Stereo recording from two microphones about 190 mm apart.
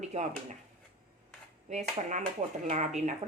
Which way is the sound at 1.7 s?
40° right (ahead or behind).